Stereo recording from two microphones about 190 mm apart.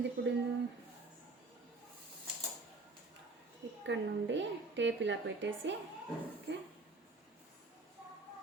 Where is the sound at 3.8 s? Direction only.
70° right (ahead or behind).